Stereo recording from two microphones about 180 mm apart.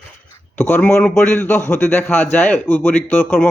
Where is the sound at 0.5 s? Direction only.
10° left (ahead or behind).